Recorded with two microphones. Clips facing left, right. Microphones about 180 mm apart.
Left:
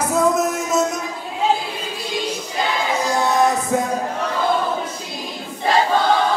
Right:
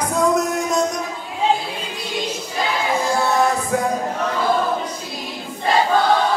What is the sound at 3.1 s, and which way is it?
Music, 20° left (ahead or behind).